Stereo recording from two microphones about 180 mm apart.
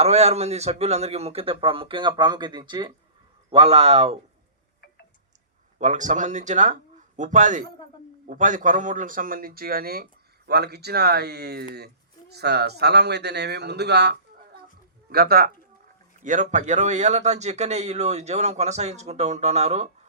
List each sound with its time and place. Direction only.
0.0 s speech: 35° right (ahead or behind)
5.8 s a man's voice: 45° right (ahead or behind); by 15.4 s 60° right (ahead or behind)
16.2 s speech: 45° right (ahead or behind)